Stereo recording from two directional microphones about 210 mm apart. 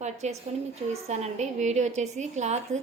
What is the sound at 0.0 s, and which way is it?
A woman's voice, 35° right (ahead or behind).